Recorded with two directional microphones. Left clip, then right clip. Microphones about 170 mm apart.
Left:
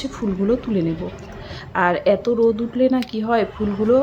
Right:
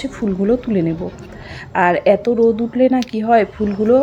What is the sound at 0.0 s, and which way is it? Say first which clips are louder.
Speech: right 3 dB; 20° right (ahead or behind).